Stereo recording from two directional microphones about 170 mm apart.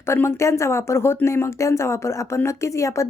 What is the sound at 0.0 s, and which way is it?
Speech, 15° left (ahead or behind).